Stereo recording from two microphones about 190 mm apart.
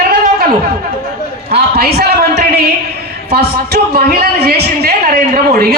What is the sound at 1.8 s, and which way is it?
Speech, 55° right (ahead or behind).